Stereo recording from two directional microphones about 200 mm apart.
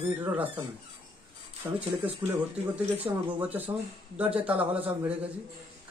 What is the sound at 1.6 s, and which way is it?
Speech, 15° right (ahead or behind).